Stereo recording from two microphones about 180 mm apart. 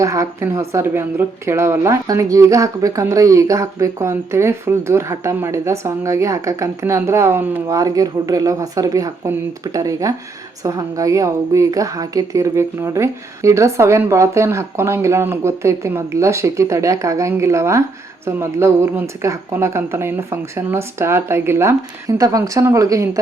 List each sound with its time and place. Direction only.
0.0 s speech: 15° right (ahead or behind)